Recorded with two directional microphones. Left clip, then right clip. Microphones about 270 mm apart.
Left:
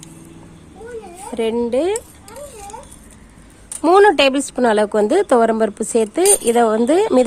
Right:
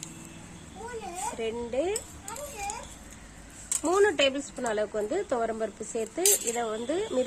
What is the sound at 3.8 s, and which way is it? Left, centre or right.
A woman's voice, left.